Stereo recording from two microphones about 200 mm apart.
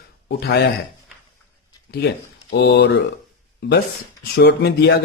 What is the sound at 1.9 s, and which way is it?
A man's voice, 55° left (ahead or behind).